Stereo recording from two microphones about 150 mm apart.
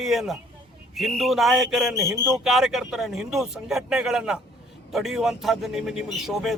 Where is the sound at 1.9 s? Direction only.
20° right (ahead or behind).